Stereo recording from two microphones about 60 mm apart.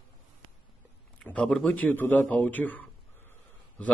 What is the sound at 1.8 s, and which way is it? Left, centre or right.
Speech, left.